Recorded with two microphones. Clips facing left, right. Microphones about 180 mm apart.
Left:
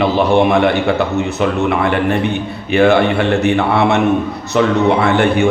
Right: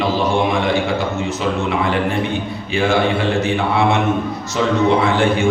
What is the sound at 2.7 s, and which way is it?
A man's voice, 65° left (ahead or behind).